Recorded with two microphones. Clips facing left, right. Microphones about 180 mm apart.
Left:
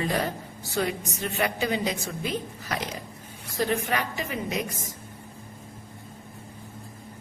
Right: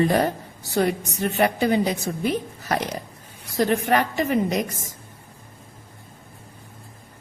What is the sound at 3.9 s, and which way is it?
Speech, 55° right (ahead or behind).